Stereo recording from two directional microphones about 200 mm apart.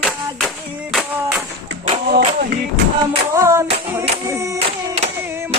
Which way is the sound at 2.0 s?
50° right (ahead or behind).